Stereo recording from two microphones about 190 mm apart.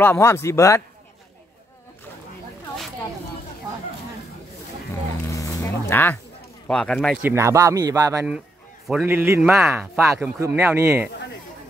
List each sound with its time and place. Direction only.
0.0 s a man's voice: 15° left (ahead or behind)
5.2 s music: 15° left (ahead or behind)
6.7 s speech: 5° left (ahead or behind)
7.2 s speech: 10° right (ahead or behind)
8.8 s speech: 5° right (ahead or behind)